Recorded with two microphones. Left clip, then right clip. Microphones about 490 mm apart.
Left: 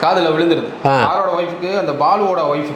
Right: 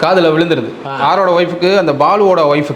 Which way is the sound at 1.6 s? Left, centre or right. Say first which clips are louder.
Right 4 dB; right.